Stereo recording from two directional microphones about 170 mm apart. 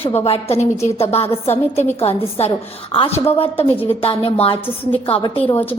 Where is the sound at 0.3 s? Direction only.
35° left (ahead or behind).